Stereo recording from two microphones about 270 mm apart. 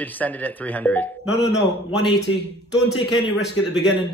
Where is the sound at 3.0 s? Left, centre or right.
Left.